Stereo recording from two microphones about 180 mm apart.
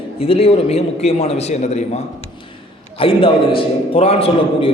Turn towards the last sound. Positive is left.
turn(degrees=35)  # may be behind; listen again after turning